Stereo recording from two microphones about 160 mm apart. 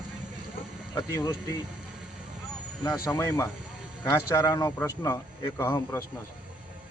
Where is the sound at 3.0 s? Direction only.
15° left (ahead or behind).